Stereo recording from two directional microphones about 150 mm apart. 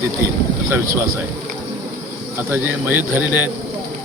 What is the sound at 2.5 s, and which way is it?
Speech, 15° right (ahead or behind).